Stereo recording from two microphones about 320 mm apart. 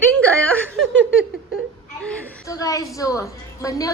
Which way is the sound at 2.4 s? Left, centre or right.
Centre.